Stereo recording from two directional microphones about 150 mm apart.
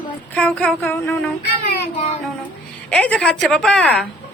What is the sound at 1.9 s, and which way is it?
Child singing, 45° left (ahead or behind).